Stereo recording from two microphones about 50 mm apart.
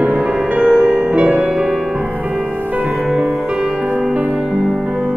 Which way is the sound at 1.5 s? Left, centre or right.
Centre.